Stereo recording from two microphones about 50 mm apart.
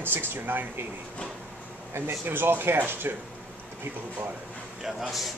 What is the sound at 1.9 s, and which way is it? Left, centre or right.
Speech, right.